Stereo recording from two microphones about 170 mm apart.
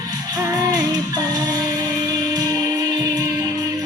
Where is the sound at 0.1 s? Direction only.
20° right (ahead or behind).